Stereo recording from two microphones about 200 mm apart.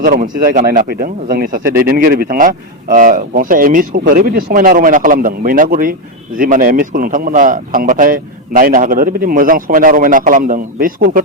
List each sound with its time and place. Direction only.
0.0 s speech: 45° right (ahead or behind)